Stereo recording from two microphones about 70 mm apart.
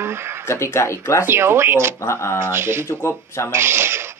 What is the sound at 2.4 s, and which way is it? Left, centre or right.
Speech, right.